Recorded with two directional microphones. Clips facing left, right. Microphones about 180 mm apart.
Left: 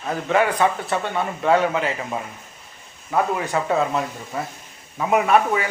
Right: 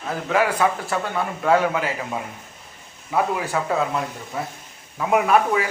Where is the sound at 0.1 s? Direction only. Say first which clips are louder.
Left 1 dB; centre (ahead or behind).